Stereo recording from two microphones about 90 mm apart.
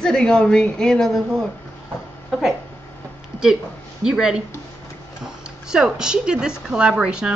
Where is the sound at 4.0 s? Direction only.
10° right (ahead or behind).